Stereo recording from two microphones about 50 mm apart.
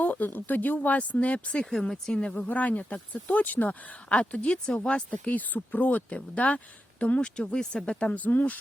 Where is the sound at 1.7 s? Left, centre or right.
Centre.